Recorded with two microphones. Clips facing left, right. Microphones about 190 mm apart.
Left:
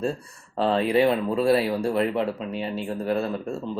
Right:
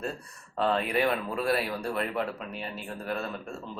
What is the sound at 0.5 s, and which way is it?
Speech, 30° left (ahead or behind).